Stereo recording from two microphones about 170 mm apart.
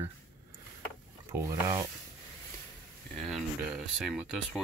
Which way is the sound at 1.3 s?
20° right (ahead or behind).